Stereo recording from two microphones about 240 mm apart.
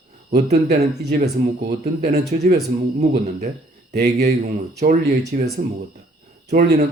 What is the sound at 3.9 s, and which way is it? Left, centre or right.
Speech, right.